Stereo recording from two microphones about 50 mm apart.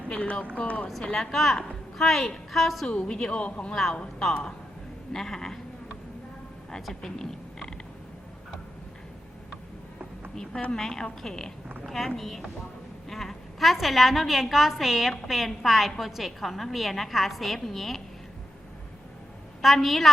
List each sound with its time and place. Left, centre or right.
0.1 s speech: left
1.0 s a woman's voice: centre
2.8 s speech: centre
5.1 s speech: centre
7.0 s speech: centre
10.8 s a woman's voice: centre
19.6 s a woman's voice: centre